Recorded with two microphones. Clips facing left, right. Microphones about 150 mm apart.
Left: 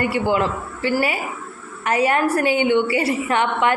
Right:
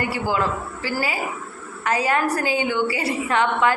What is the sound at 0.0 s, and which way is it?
Speech, 25° left (ahead or behind).